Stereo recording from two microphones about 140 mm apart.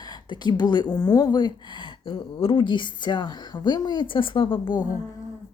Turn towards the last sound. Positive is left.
turn(degrees=35)  # may be behind; listen again after turning